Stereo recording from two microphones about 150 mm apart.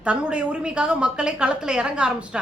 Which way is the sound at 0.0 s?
5° right (ahead or behind).